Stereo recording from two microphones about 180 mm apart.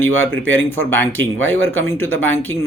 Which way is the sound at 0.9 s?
10° left (ahead or behind).